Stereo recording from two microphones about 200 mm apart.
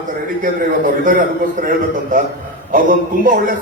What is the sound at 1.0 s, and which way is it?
Speech, 40° right (ahead or behind).